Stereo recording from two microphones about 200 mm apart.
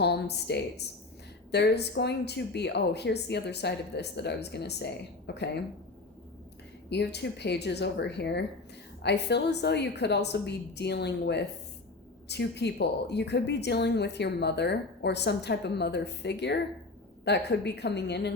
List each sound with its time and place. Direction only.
0.0 s a woman's voice: 55° left (ahead or behind)
6.9 s a woman's voice: 60° left (ahead or behind)